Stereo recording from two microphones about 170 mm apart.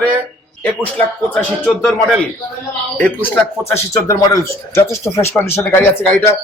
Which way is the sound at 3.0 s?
10° left (ahead or behind).